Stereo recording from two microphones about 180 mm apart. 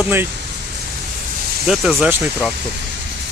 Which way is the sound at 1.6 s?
Centre (ahead or behind).